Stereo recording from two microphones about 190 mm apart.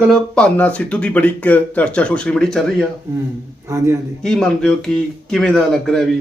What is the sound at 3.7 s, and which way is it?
Speech, 15° right (ahead or behind).